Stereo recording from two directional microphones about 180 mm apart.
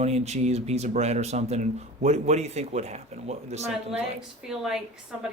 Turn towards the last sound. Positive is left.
turn(degrees=-5)  # may be behind; listen again after turning